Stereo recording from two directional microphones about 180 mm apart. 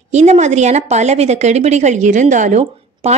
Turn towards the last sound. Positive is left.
turn(degrees=-40)  # may be behind; listen again after turning